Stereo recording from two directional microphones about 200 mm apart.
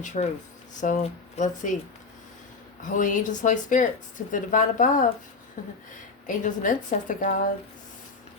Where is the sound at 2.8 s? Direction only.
40° left (ahead or behind).